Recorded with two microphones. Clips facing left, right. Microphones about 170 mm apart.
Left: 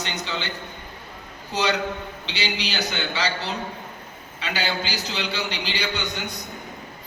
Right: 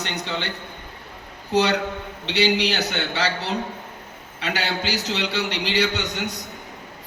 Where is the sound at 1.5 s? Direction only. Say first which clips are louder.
Right 4 dB; 65° right (ahead or behind).